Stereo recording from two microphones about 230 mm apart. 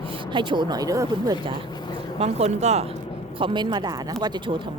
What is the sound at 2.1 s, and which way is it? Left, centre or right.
Speech, right.